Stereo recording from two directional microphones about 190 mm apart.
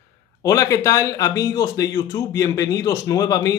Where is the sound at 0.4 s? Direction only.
20° left (ahead or behind).